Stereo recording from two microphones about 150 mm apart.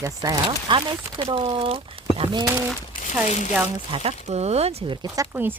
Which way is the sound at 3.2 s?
50° left (ahead or behind).